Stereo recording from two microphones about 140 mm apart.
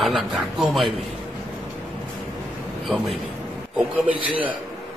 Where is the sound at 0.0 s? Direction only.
5° right (ahead or behind).